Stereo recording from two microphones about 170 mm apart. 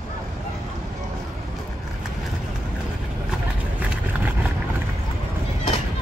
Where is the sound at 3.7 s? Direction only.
10° right (ahead or behind).